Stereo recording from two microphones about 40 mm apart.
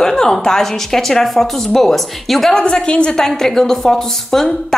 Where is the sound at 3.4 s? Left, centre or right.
Centre.